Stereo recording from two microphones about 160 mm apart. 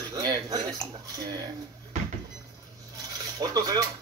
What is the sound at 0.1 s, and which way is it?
Dishes, 25° right (ahead or behind).